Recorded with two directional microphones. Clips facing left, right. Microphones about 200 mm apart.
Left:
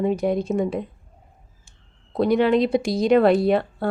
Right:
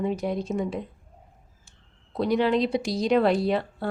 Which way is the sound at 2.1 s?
55° left (ahead or behind).